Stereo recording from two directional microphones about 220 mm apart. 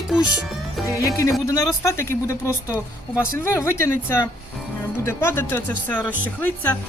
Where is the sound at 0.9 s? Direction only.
15° left (ahead or behind).